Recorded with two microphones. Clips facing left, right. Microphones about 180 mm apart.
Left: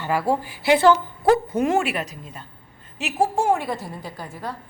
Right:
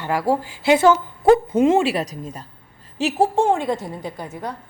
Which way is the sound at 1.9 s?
40° right (ahead or behind).